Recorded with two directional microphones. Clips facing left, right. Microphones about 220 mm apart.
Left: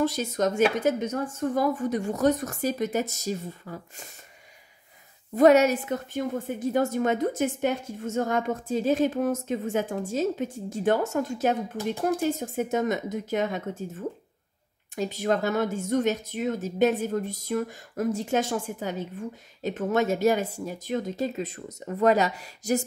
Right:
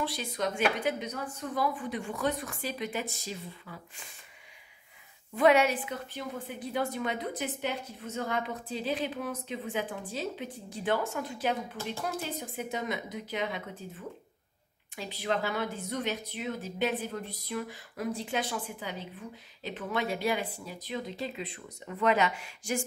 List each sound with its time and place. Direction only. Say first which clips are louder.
0.0 s speech: left 8 dB; 45° left (ahead or behind)
5.3 s speech: left 6 dB; 40° left (ahead or behind)
11.7 s speech: left 8 dB; 15° left (ahead or behind)
12.0 s speech: left 12 dB; 45° left (ahead or behind)